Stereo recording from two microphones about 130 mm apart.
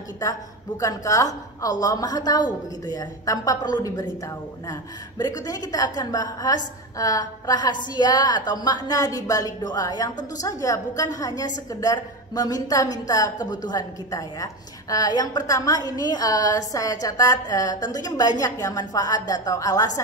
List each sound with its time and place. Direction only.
0.2 s a woman's voice: 25° left (ahead or behind)